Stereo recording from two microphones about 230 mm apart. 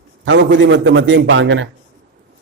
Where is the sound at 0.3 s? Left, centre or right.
Right.